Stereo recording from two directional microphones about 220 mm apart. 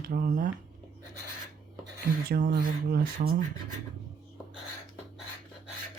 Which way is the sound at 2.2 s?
45° right (ahead or behind).